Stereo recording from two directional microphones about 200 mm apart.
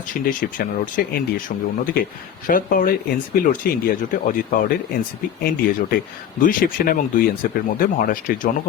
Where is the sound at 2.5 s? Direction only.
45° left (ahead or behind).